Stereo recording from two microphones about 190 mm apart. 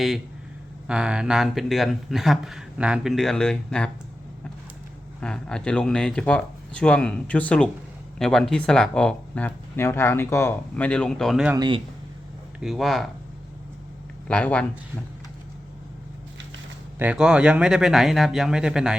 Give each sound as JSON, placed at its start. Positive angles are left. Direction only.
{"t": 0.9, "sound": "speech", "side_deg": -5}
{"t": 5.2, "sound": "speech", "side_deg": 5}
{"t": 11.5, "sound": "speech", "side_deg": -20}
{"t": 12.5, "sound": "speech", "side_deg": 0}
{"t": 14.3, "sound": "speech", "side_deg": 5}
{"t": 17.0, "sound": "speech", "side_deg": -5}